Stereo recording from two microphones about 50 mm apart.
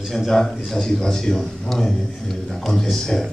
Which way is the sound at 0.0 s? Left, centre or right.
Centre.